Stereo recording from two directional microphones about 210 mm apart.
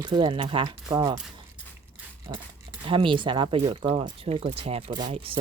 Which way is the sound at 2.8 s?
25° right (ahead or behind).